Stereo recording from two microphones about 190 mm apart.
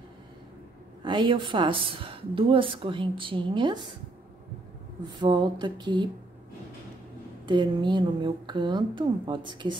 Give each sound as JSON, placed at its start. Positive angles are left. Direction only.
{"t": 1.0, "sound": "a woman's voice", "side_deg": -25}
{"t": 5.2, "sound": "a woman's voice", "side_deg": -25}
{"t": 7.4, "sound": "a woman's voice", "side_deg": -25}